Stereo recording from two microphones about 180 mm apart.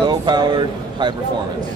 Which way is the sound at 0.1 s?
25° right (ahead or behind).